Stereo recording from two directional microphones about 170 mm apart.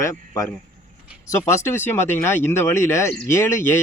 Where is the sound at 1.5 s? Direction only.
15° left (ahead or behind).